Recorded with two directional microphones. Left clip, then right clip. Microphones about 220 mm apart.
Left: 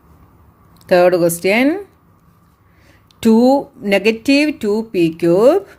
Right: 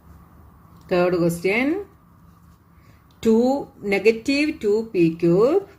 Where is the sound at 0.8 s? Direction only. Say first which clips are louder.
Left 9 dB; 50° left (ahead or behind).